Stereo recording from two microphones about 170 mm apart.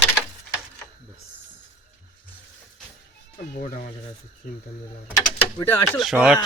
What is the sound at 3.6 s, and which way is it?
Speech, 50° left (ahead or behind).